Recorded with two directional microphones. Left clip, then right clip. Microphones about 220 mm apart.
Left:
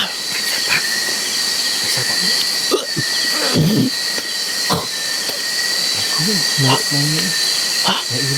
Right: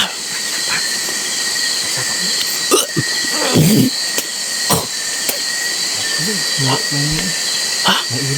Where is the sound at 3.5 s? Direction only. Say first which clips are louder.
Right 3 dB; 40° right (ahead or behind).